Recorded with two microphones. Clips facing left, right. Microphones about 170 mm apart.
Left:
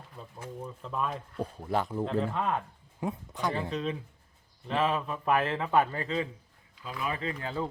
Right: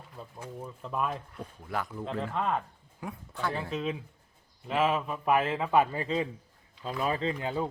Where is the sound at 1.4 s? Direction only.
30° left (ahead or behind).